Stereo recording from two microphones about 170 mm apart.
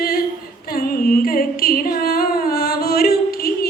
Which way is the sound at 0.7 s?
60° left (ahead or behind).